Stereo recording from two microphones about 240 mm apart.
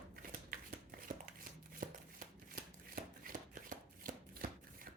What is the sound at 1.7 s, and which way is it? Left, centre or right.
Shuffling cards, right.